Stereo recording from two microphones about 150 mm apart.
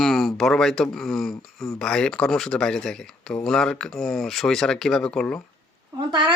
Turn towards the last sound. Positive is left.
turn(degrees=-30)  # may be behind; listen again after turning